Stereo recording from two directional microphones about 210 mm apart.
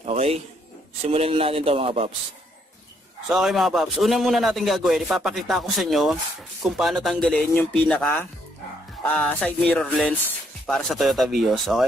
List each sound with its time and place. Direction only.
0.0 s a sound: 30° right (ahead or behind)
1.0 s speech: 30° right (ahead or behind)
3.3 s speech: centre (ahead or behind)